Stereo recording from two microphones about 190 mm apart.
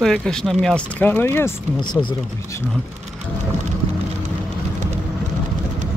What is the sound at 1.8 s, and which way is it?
Speech, 25° left (ahead or behind).